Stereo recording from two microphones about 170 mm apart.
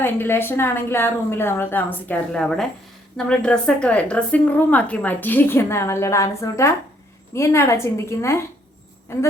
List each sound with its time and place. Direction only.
0.0 s a woman's voice: 15° left (ahead or behind)